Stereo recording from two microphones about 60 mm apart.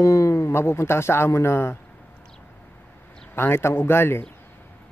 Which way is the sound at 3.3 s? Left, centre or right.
Left.